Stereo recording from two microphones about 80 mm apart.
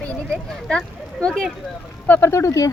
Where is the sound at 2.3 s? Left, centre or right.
Left.